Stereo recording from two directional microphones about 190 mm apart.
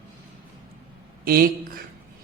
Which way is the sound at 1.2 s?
50° right (ahead or behind).